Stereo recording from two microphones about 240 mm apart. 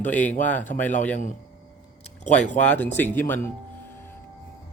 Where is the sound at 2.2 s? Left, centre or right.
Left.